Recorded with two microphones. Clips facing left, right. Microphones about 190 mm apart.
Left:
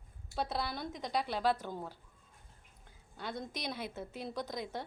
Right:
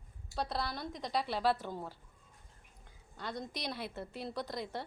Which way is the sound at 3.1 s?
5° left (ahead or behind).